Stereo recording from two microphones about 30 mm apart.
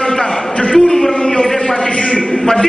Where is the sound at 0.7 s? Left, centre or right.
Centre.